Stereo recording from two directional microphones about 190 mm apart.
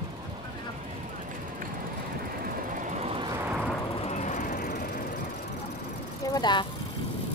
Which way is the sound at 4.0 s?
40° left (ahead or behind).